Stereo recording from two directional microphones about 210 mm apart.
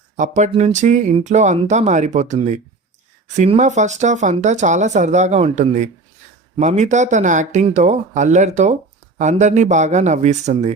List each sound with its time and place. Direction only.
0.2 s speech: 35° right (ahead or behind)